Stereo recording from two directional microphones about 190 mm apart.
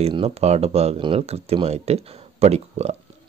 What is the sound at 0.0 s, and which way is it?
Speech, 30° right (ahead or behind).